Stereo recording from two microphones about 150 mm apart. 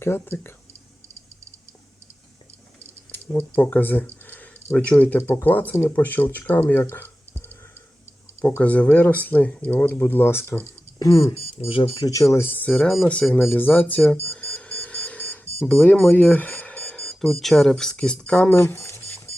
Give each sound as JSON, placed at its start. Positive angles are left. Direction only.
{"t": 0.0, "sound": "speech", "side_deg": 15}
{"t": 3.1, "sound": "speech", "side_deg": 10}
{"t": 8.4, "sound": "speech", "side_deg": 15}
{"t": 11.5, "sound": "speech", "side_deg": 35}